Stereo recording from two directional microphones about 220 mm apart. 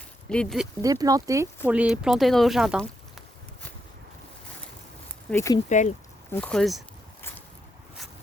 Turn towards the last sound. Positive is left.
turn(degrees=10)  # may be behind; listen again after turning